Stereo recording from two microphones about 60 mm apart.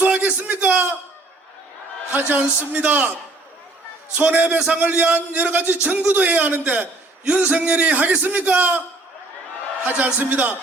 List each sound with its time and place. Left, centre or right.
0.0 s a sound: right
2.1 s a man's voice: right
4.2 s a man's voice: centre
9.8 s a man's voice: right